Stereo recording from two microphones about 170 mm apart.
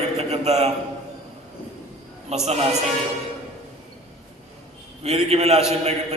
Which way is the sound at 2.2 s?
40° right (ahead or behind).